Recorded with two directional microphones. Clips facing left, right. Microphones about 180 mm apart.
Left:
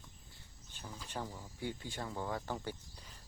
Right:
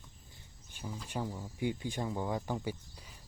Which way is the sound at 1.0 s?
10° right (ahead or behind).